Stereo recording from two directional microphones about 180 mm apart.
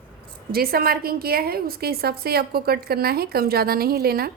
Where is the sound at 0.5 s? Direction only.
55° right (ahead or behind).